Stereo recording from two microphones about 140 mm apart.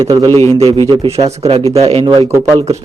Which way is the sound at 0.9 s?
45° right (ahead or behind).